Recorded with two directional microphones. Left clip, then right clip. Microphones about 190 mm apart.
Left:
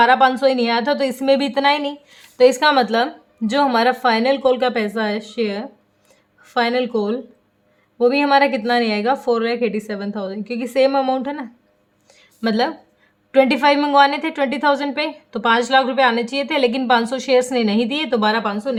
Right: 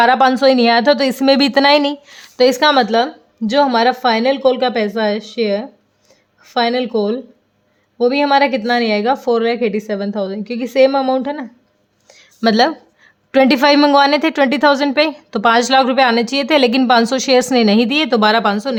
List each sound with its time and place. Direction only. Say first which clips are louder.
0.0 s a woman's voice: right 2 dB; 40° right (ahead or behind); by 11.4 s 20° right (ahead or behind)
12.1 s a sound: right 7 dB; 35° right (ahead or behind)
13.3 s a woman's voice: right 3 dB; 40° right (ahead or behind)